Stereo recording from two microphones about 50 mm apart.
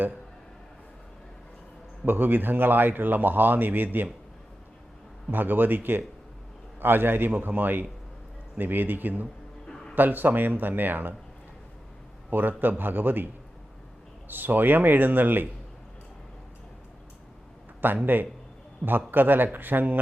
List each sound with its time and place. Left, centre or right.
2.0 s speech: right
5.3 s speech: right
12.3 s speech: right
18.0 s a man's voice: right